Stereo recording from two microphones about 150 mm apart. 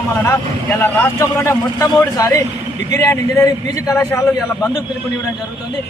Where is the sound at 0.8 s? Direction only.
15° left (ahead or behind).